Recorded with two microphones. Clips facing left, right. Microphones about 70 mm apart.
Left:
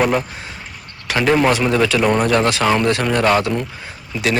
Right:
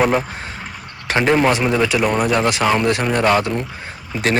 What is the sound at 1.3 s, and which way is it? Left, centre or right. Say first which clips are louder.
A man's voice: left 1 dB; centre.